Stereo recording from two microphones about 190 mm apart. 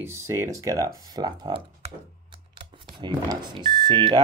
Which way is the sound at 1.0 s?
20° right (ahead or behind).